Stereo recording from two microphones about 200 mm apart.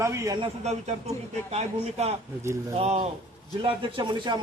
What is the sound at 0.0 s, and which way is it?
Speech, 15° right (ahead or behind).